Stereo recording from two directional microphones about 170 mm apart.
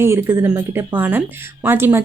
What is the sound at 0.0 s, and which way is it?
A woman's voice, 15° right (ahead or behind).